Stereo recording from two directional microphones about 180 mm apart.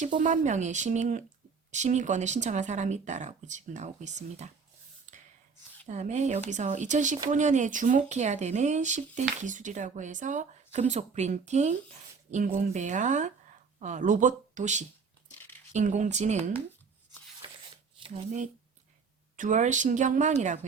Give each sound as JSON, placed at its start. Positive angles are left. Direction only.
{"t": 0.2, "sound": "speech", "side_deg": -45}
{"t": 5.1, "sound": "gasp", "side_deg": -40}
{"t": 5.8, "sound": "speech", "side_deg": -40}
{"t": 17.9, "sound": "speech", "side_deg": -35}